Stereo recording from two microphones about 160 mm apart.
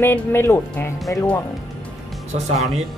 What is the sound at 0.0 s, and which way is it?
Speech, 15° left (ahead or behind).